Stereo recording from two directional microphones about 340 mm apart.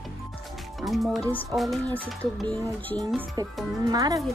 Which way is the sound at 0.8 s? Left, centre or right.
Centre.